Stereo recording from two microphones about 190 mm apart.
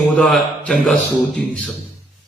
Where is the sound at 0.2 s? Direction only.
5° left (ahead or behind).